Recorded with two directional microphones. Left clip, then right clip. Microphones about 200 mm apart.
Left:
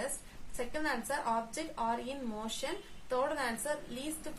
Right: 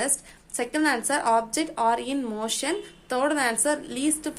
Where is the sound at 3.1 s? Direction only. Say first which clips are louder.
Right 9 dB; 40° right (ahead or behind).